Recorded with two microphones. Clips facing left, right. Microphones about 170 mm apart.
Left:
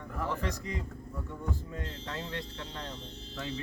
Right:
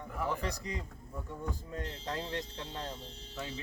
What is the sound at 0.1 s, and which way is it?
Music, 10° right (ahead or behind).